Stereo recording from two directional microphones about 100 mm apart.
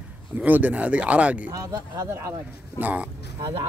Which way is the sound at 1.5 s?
35° right (ahead or behind).